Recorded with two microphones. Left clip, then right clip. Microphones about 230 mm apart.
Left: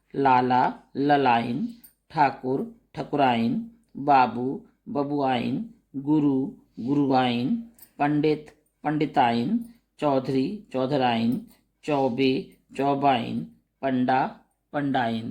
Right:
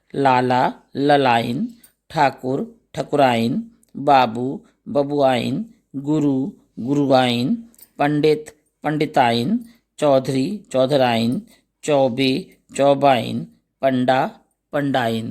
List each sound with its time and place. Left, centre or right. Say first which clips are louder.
0.1 s speech: right 4 dB; right